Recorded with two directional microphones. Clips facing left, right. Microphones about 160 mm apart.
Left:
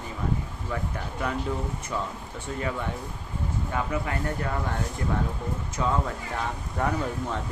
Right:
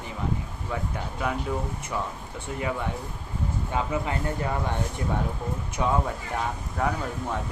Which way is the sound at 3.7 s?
20° right (ahead or behind).